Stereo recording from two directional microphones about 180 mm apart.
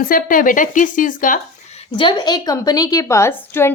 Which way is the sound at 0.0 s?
50° left (ahead or behind).